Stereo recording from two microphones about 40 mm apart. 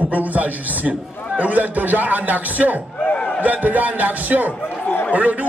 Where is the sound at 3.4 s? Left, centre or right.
Right.